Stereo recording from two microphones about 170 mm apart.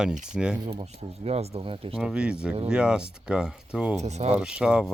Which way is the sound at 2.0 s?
5° right (ahead or behind).